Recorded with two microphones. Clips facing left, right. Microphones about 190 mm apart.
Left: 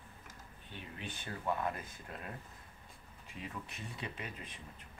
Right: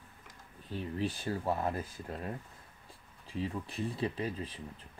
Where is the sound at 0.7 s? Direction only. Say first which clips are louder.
Right 12 dB; 35° right (ahead or behind).